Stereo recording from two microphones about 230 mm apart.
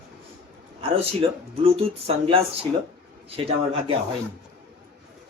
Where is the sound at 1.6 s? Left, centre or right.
Right.